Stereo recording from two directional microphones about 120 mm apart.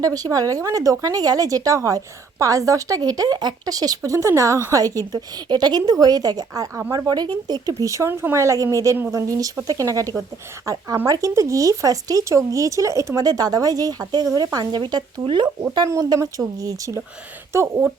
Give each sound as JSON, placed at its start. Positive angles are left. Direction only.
{"t": 0.0, "sound": "a woman's voice", "side_deg": -30}
{"t": 15.7, "sound": "speech", "side_deg": -30}